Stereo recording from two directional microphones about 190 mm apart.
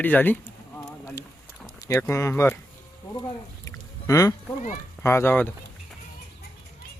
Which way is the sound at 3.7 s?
15° left (ahead or behind).